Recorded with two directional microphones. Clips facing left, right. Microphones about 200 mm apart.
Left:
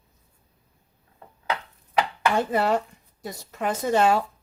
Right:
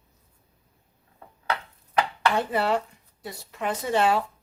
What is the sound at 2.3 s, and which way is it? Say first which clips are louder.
Speech: left 3 dB; 45° left (ahead or behind).